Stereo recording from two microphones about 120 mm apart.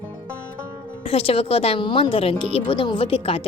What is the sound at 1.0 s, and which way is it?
A woman's voice, 55° left (ahead or behind).